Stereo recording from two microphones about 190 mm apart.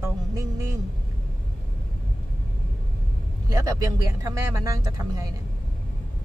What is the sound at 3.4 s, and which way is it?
Speech, 20° right (ahead or behind).